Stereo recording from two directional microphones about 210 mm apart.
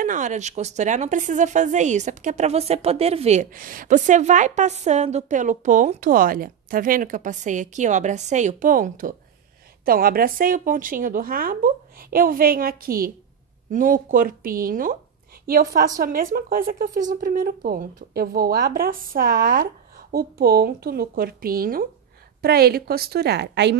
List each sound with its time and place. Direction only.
0.0 s a woman's voice: 35° right (ahead or behind); by 23.8 s 55° right (ahead or behind)